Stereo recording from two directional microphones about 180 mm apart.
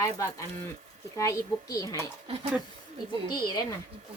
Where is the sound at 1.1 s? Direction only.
15° left (ahead or behind).